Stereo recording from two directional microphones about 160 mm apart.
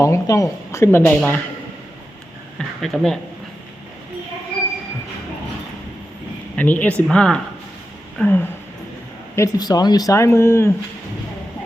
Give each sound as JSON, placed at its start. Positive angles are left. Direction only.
{"t": 0.0, "sound": "speech", "side_deg": 20}
{"t": 2.6, "sound": "speech", "side_deg": 0}
{"t": 6.6, "sound": "speech", "side_deg": 10}
{"t": 9.3, "sound": "speech", "side_deg": 20}